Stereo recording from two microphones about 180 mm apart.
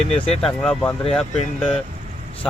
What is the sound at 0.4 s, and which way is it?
Speech, 5° left (ahead or behind).